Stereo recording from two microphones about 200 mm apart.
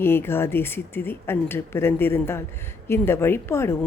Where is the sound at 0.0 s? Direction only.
10° left (ahead or behind).